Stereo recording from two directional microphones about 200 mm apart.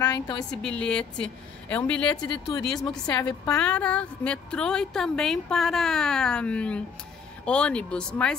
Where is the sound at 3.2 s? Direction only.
15° left (ahead or behind).